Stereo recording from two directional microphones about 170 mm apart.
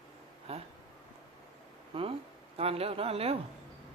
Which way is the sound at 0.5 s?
35° right (ahead or behind).